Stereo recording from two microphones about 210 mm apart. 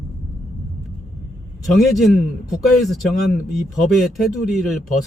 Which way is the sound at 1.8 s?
Centre (ahead or behind).